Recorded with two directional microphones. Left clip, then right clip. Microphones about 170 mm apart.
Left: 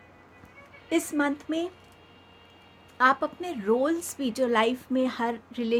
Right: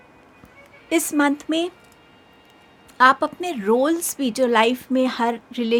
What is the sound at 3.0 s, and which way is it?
A woman's voice, 35° right (ahead or behind).